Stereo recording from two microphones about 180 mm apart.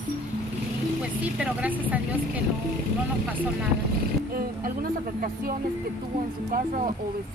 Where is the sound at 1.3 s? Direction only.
5° right (ahead or behind).